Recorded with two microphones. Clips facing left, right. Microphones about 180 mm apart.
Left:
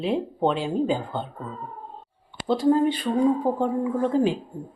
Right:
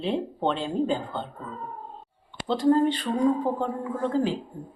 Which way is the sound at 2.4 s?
10° left (ahead or behind).